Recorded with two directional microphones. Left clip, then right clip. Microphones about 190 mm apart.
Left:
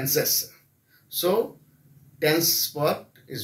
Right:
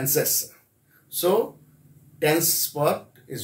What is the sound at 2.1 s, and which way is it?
Speech, 10° right (ahead or behind).